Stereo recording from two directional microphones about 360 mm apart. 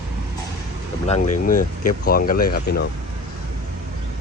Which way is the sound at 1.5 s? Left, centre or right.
Left.